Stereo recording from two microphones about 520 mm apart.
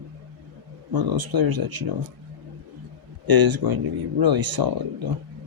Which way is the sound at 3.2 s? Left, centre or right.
Right.